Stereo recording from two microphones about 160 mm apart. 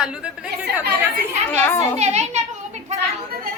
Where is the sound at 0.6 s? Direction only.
75° right (ahead or behind).